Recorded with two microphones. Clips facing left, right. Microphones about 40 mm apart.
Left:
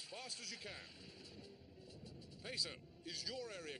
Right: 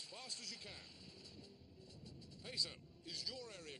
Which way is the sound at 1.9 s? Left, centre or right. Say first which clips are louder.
Even; centre.